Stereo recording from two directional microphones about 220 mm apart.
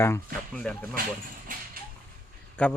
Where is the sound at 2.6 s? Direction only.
5° left (ahead or behind).